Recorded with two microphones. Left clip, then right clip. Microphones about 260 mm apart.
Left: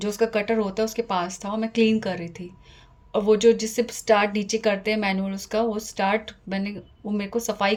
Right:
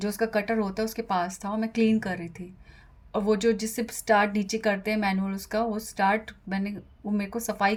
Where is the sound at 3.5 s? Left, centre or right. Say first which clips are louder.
Left 7 dB; right.